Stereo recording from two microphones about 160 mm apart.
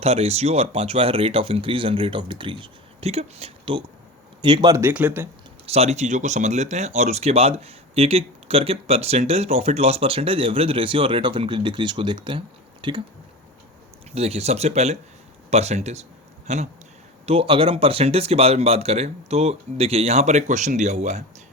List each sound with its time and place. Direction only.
0.0 s speech: 40° right (ahead or behind); by 5.3 s 10° right (ahead or behind)
5.6 s speech: 40° right (ahead or behind)
14.1 s speech: 40° right (ahead or behind)